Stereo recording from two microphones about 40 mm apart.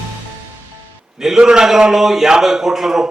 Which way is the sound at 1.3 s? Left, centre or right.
Centre.